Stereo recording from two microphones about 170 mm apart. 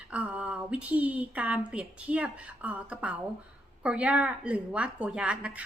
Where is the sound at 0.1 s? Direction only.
5° right (ahead or behind).